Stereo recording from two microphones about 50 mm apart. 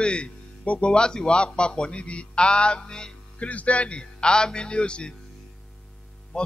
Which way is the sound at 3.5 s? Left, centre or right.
Left.